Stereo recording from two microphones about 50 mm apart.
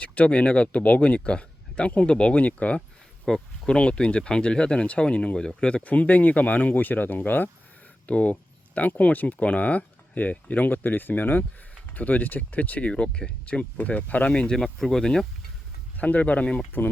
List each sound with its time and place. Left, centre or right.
0.0 s speech: left
3.2 s speech: centre
3.8 s speech: left
5.8 s speech: left
8.0 s a sound: left
9.0 s speech: left
14.3 s speech: centre
14.6 s speech: centre
16.0 s speech: left